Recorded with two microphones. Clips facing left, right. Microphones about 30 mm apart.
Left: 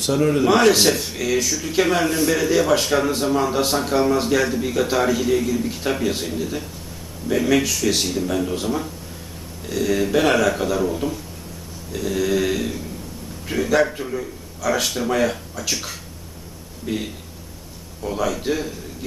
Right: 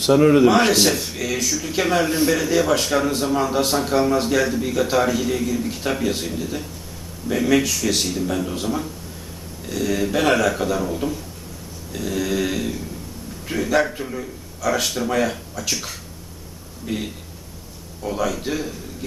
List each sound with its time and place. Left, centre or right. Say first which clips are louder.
0.0 s a man's voice: right 5 dB; centre
0.4 s a man's voice: even; centre